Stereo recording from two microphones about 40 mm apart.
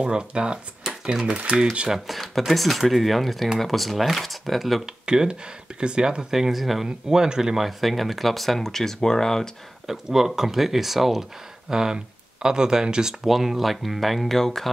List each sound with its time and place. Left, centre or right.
0.0 s speech: right
1.9 s speech: centre
4.8 s speech: centre
6.3 s speech: centre
6.9 s speech: centre
7.6 s speech: centre
9.8 s speech: centre
11.7 s speech: centre
13.2 s speech: centre